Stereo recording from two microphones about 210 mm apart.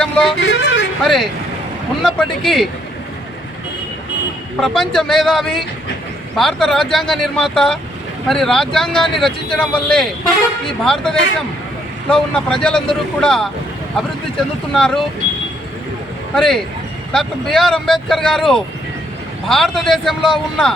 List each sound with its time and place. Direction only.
0.0 s speech: 5° left (ahead or behind)
0.3 s speech: 60° left (ahead or behind)
1.0 s speech: centre (ahead or behind)
4.6 s speech: centre (ahead or behind)
16.3 s speech: centre (ahead or behind)